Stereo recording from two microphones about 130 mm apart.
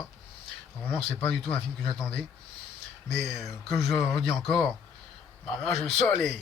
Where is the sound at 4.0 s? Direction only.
50° left (ahead or behind).